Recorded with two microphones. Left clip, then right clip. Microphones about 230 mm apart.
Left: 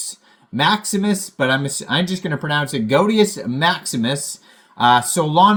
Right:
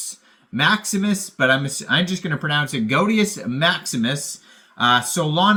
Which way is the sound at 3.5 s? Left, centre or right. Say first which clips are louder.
Left 1 dB; centre.